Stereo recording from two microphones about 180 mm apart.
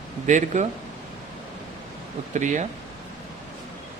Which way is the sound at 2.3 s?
45° right (ahead or behind).